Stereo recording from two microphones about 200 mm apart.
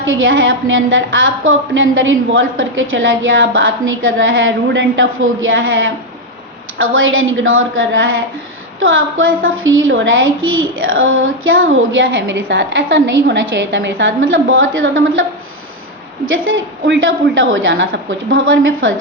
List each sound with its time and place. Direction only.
0.0 s a woman's voice: 75° right (ahead or behind)
16.8 s a woman's voice: 65° right (ahead or behind)